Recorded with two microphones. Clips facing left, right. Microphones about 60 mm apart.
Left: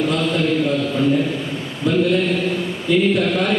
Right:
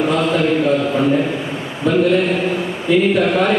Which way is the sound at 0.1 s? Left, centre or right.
Centre.